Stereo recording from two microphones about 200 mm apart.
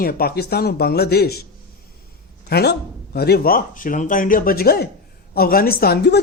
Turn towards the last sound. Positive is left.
turn(degrees=55)  # may be behind; listen again after turning